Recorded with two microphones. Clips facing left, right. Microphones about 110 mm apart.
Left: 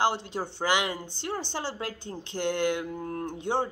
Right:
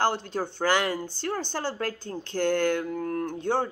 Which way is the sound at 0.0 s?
15° left (ahead or behind).